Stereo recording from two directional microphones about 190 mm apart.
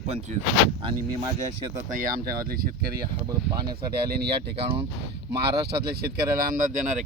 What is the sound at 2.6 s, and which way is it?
Speech, 55° right (ahead or behind).